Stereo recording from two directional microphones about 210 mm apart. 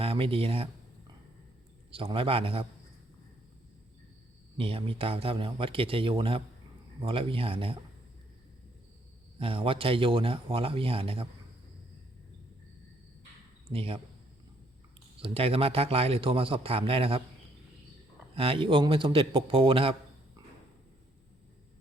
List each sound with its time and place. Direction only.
0.0 s a sound: 25° right (ahead or behind)
2.1 s a man's voice: 25° right (ahead or behind)
4.5 s a man's voice: 25° right (ahead or behind)
9.4 s a man's voice: 25° right (ahead or behind)
13.7 s a man's voice: 25° right (ahead or behind)
15.2 s a man's voice: 25° right (ahead or behind)
18.3 s a man's voice: 25° right (ahead or behind)